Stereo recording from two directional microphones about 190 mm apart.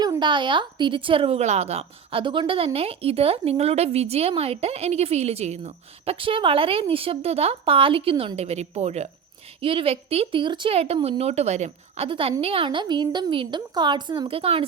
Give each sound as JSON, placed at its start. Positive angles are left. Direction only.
{"t": 0.0, "sound": "speech", "side_deg": -25}